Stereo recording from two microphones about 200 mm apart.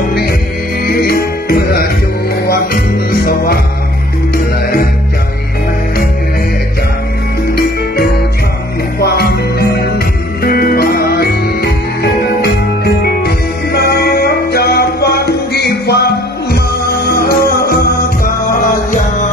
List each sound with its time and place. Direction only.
0.0 s music: 50° left (ahead or behind)
7.5 s music: 55° left (ahead or behind)